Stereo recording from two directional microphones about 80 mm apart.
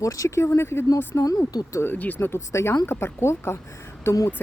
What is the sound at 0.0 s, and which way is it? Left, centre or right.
Speech, left.